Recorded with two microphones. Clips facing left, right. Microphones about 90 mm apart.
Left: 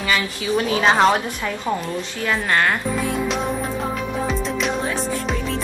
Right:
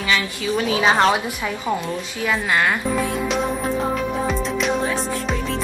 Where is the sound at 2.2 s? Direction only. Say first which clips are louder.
Even; 5° right (ahead or behind).